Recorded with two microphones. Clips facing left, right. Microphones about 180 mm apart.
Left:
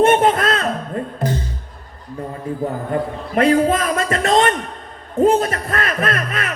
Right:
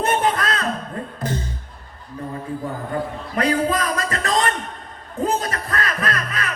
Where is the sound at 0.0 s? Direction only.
25° left (ahead or behind).